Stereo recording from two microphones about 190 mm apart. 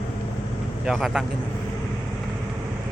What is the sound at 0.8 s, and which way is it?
Speech, centre (ahead or behind).